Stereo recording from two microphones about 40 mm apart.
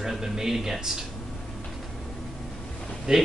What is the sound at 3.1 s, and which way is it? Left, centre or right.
Speech, centre.